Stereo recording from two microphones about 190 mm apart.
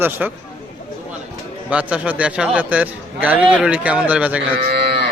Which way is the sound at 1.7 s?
5° right (ahead or behind).